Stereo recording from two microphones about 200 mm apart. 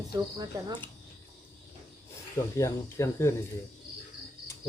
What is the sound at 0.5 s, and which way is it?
Speech, 20° right (ahead or behind).